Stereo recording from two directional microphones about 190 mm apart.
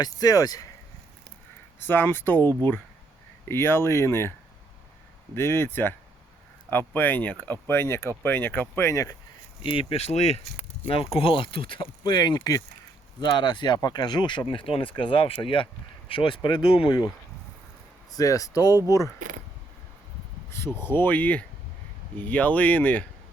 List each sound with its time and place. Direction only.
0.0 s speech: 20° left (ahead or behind)
1.8 s speech: 10° left (ahead or behind)
9.6 s speech: 30° left (ahead or behind)
18.2 s speech: 20° left (ahead or behind)
20.8 s speech: 10° left (ahead or behind)